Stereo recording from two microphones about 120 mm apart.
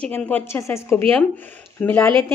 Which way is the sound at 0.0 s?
15° left (ahead or behind).